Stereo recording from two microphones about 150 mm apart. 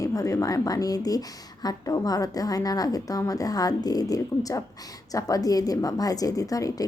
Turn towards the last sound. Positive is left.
turn(degrees=25)  # may be behind; listen again after turning